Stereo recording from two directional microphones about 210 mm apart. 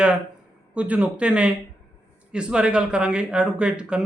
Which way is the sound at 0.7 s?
5° right (ahead or behind).